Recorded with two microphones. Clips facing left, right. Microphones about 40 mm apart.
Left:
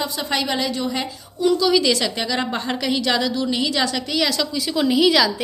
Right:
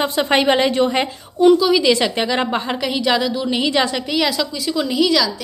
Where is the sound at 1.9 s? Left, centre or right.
Right.